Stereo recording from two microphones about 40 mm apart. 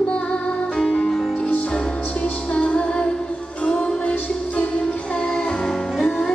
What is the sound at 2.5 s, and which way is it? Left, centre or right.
Music, left.